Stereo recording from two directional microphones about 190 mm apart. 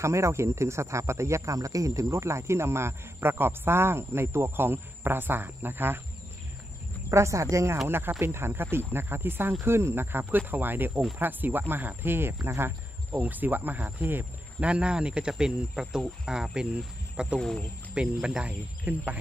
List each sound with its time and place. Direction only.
0.0 s speech: 15° right (ahead or behind)
7.1 s speech: 15° right (ahead or behind)